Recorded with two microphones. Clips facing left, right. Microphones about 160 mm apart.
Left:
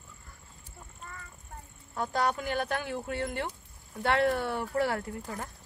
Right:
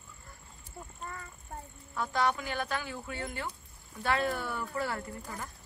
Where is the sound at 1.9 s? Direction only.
45° left (ahead or behind); by 5.5 s 65° left (ahead or behind).